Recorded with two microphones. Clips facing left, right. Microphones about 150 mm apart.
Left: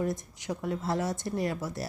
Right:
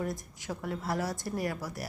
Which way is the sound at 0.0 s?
20° left (ahead or behind).